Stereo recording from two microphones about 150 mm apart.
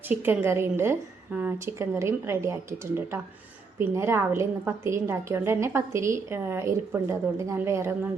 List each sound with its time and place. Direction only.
0.1 s a woman's voice: 15° right (ahead or behind)